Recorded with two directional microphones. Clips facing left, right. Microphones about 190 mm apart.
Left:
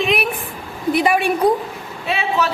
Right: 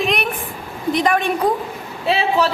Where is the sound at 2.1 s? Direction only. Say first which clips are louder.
Right 3 dB; 30° right (ahead or behind).